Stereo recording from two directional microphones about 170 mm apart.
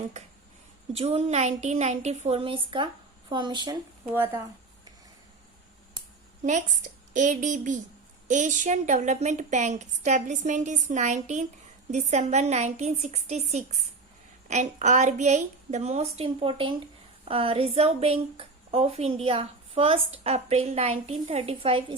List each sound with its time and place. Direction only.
0.9 s a woman's voice: 40° right (ahead or behind)
4.1 s speech: 15° right (ahead or behind)
7.1 s a woman's voice: 45° right (ahead or behind); by 21.9 s 30° right (ahead or behind)